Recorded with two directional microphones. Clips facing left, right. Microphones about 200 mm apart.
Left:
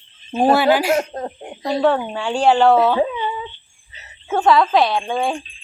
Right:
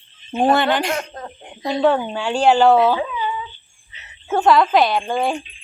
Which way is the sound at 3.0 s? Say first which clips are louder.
Left 4 dB; 35° left (ahead or behind).